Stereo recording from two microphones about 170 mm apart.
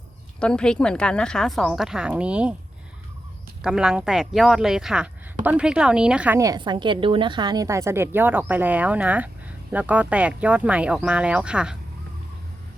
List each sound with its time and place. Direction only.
0.3 s speech: 5° left (ahead or behind)
3.6 s speech: 5° right (ahead or behind)
6.4 s a woman's voice: 25° right (ahead or behind); by 11.8 s 5° right (ahead or behind)